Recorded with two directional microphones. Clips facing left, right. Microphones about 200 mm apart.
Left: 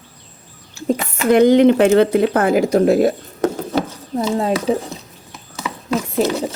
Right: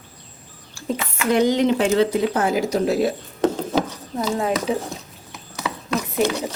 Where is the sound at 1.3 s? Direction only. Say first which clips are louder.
Left 7 dB; 55° left (ahead or behind).